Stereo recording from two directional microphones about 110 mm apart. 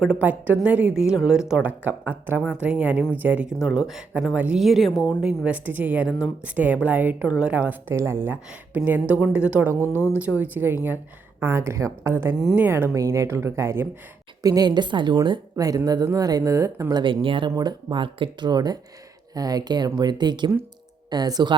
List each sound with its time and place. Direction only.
0.0 s a woman's voice: 10° right (ahead or behind)
9.6 s a woman's voice: 20° right (ahead or behind)
14.4 s a woman's voice: 35° right (ahead or behind)
17.0 s speech: 50° right (ahead or behind)
17.5 s a woman's voice: 35° right (ahead or behind)